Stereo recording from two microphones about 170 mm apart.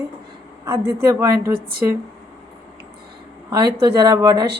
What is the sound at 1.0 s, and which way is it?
Speech, 20° right (ahead or behind).